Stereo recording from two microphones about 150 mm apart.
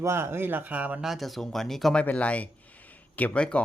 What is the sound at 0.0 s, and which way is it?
Speech, 15° right (ahead or behind).